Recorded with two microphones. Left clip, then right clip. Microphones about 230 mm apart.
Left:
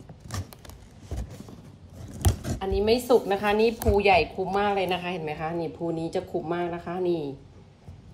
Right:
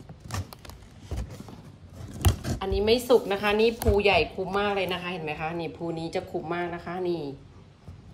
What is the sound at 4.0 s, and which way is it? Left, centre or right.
A woman's voice, centre.